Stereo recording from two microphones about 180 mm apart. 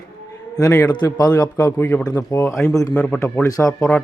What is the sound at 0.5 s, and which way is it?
A man's voice, 20° left (ahead or behind).